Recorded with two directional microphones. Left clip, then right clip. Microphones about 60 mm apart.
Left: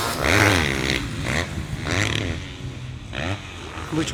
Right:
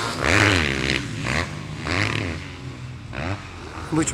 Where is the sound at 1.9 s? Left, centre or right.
Left.